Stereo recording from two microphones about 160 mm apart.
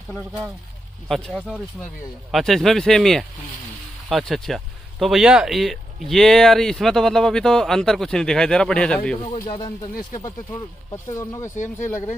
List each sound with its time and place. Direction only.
1.0 s speech: centre (ahead or behind)
10.9 s speech: 20° left (ahead or behind)
11.5 s speech: 50° left (ahead or behind)